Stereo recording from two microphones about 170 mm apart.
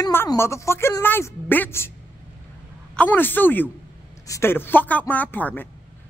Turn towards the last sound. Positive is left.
turn(degrees=10)  # may be behind; listen again after turning